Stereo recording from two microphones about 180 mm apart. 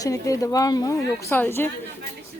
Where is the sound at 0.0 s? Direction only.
20° left (ahead or behind).